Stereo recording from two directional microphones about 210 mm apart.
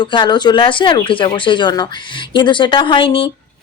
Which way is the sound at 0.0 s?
20° left (ahead or behind).